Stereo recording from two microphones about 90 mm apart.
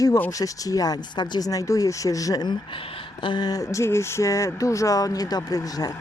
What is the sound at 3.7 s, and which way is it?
Speech, 30° left (ahead or behind).